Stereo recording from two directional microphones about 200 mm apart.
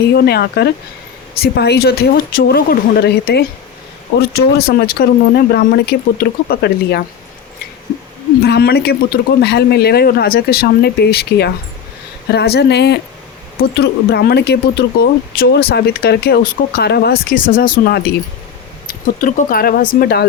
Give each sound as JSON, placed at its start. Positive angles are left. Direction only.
{"t": 0.2, "sound": "speech", "side_deg": 50}
{"t": 8.4, "sound": "speech", "side_deg": 55}